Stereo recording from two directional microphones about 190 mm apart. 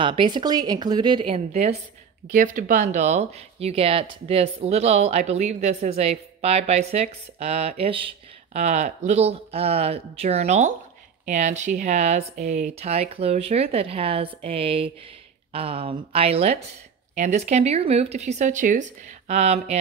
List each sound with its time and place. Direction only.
0.0 s a woman's voice: 25° right (ahead or behind)
2.3 s a woman's voice: 45° right (ahead or behind)